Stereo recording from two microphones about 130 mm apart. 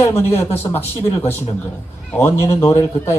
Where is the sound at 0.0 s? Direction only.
20° left (ahead or behind).